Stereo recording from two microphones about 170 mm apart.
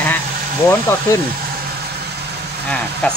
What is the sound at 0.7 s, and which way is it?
Speech, 15° left (ahead or behind).